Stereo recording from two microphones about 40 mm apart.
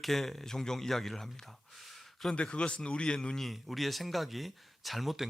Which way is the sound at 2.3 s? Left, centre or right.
Left.